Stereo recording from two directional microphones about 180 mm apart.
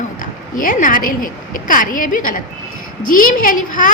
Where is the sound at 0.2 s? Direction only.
50° left (ahead or behind).